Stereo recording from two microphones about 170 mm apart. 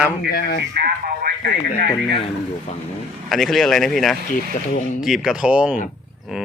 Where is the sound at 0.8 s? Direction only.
60° right (ahead or behind).